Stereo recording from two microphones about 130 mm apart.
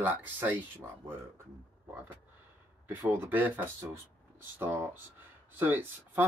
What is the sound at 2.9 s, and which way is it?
Speech, 15° right (ahead or behind).